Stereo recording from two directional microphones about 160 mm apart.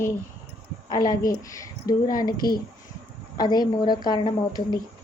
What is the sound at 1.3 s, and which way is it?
Speech, 20° left (ahead or behind).